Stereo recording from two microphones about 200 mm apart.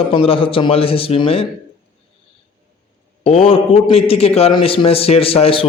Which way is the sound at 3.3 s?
25° left (ahead or behind).